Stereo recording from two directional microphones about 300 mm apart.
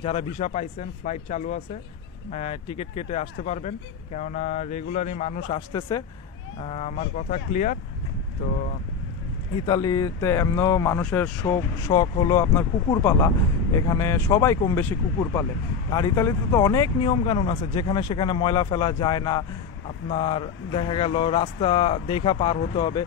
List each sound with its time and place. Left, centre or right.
0.0 s speech: centre
9.7 s speech: centre